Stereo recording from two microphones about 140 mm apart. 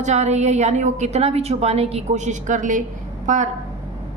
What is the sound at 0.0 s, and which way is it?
A woman's voice, 55° right (ahead or behind).